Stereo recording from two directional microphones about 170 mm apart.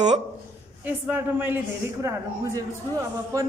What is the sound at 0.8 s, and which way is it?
Speech, 10° right (ahead or behind).